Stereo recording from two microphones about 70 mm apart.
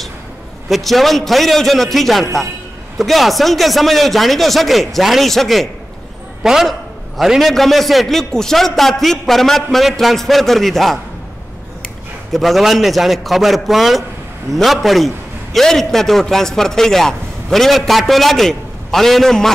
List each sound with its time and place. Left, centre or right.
0.7 s a man's voice: centre
12.3 s a man's voice: centre